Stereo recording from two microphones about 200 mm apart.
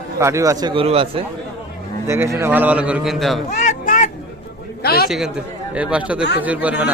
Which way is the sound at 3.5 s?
40° left (ahead or behind).